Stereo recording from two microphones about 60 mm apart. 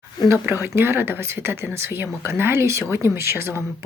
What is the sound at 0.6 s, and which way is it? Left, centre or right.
Speech, right.